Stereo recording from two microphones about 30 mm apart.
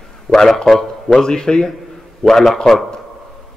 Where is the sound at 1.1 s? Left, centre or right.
Left.